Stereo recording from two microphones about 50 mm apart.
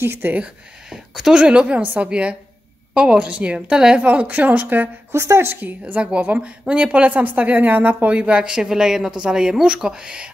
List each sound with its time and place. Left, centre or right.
0.0 s a woman's voice: right
0.9 s a sound: centre
1.4 s speech: right
4.0 s speech: right
5.1 s a woman's voice: right; by 10.3 s centre